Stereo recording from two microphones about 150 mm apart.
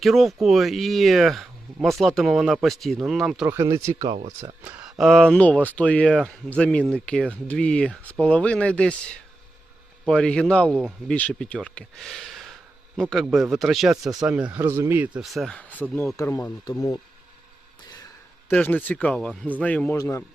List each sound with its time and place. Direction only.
0.0 s speech: centre (ahead or behind)
3.4 s speech: 20° right (ahead or behind)
4.8 s speech: centre (ahead or behind)
14.0 s speech: 25° right (ahead or behind)
14.3 s speech: 10° right (ahead or behind); by 17.0 s 20° left (ahead or behind)
18.4 s speech: 10° left (ahead or behind)
19.3 s speech: 5° right (ahead or behind)
19.5 s speech: 10° left (ahead or behind)